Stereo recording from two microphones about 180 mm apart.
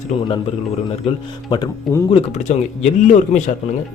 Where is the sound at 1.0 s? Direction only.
35° left (ahead or behind).